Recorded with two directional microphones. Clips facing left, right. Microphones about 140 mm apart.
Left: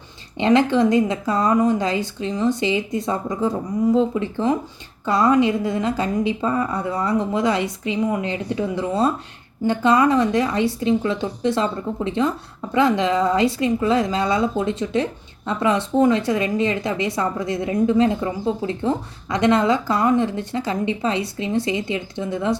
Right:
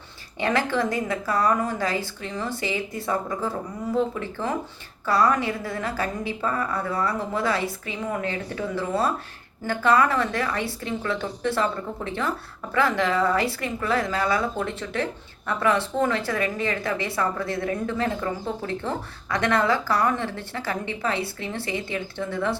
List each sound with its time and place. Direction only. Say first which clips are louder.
0.3 s a woman's voice: left 7 dB; 20° left (ahead or behind)